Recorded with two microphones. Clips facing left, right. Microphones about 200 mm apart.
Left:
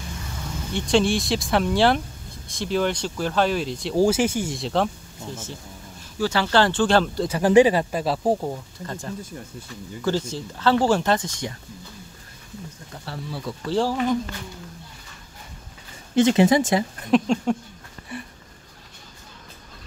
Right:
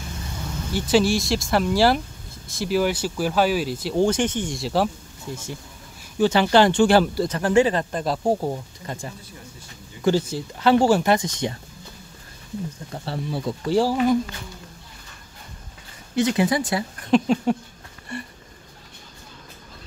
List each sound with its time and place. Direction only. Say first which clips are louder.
0.7 s speech: right 1 dB; 5° right (ahead or behind)
4.0 s speech: left 1 dB; 5° left (ahead or behind); by 7.2 s 10° right (ahead or behind)
7.2 s speech: left 3 dB; 10° left (ahead or behind)
8.4 s speech: right 2 dB; 10° right (ahead or behind)
12.9 s speech: right 5 dB; 30° right (ahead or behind)
13.7 s speech: right 3 dB; 10° right (ahead or behind)
16.2 s speech: left 4 dB; 25° left (ahead or behind)
17.1 s speech: right 1 dB; 5° right (ahead or behind)
18.1 s a sound: right 2 dB; 5° left (ahead or behind)